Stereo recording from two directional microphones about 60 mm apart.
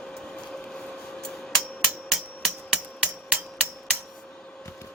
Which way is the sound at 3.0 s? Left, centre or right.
Centre.